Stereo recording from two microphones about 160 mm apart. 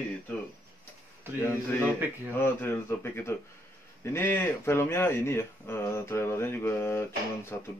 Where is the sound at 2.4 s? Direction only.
15° left (ahead or behind).